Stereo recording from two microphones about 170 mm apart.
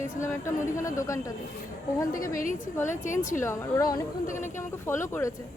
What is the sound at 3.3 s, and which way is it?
Speech, 15° left (ahead or behind).